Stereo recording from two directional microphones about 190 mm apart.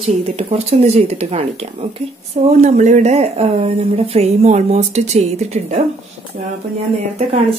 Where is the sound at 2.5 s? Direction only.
40° right (ahead or behind).